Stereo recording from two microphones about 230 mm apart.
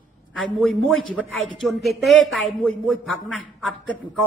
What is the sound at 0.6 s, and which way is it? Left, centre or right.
A woman's voice, centre.